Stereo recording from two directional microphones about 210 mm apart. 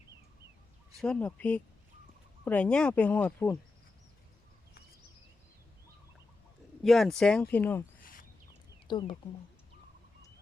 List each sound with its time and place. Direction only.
0.9 s speech: 5° left (ahead or behind)
6.8 s speech: centre (ahead or behind)
8.0 s a sound: 40° left (ahead or behind)
8.9 s speech: 20° left (ahead or behind)